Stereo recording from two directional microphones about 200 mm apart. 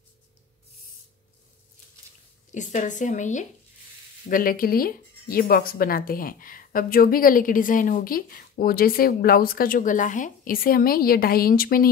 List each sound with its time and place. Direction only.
2.5 s speech: 40° left (ahead or behind)